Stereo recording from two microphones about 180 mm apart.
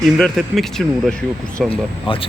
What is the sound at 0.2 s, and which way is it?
Speech, centre (ahead or behind).